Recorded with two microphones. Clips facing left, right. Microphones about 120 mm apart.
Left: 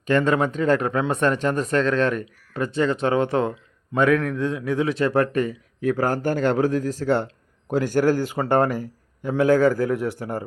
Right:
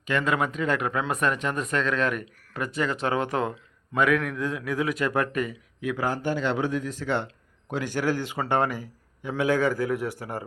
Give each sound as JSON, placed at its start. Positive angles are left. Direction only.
{"t": 0.1, "sound": "a man's voice", "side_deg": 30}
{"t": 9.5, "sound": "a man's voice", "side_deg": 30}